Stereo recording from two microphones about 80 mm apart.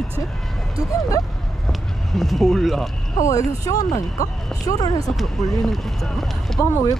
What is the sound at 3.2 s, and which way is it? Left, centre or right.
Speech, left.